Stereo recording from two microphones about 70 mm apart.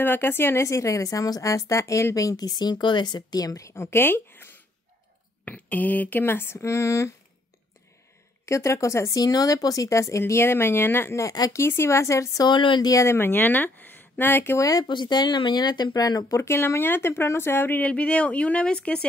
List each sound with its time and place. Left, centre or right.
0.0 s speech: left
8.5 s speech: left
11.2 s speech: left
11.5 s speech: left
12.4 s speech: left
12.9 s speech: left
14.6 s speech: left
16.3 s speech: left; by 19.0 s centre